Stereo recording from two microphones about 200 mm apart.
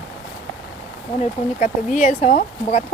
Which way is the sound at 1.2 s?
40° left (ahead or behind).